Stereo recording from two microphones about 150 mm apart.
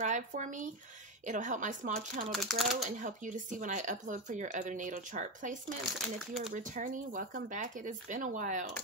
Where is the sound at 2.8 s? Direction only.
55° right (ahead or behind).